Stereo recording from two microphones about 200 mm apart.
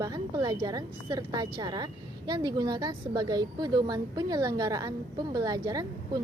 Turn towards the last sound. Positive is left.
turn(degrees=-20)  # may be behind; listen again after turning